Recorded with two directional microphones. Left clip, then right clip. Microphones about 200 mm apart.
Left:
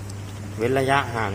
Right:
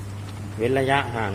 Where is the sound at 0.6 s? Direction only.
10° right (ahead or behind).